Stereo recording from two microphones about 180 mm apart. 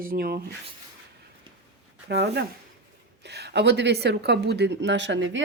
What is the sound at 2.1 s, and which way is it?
A woman's voice, 65° right (ahead or behind).